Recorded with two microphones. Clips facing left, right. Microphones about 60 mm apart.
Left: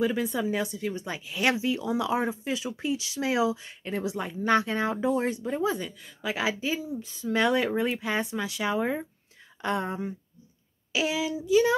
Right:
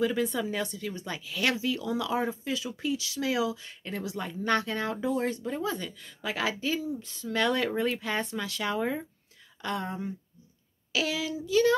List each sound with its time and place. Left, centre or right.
0.0 s speech: centre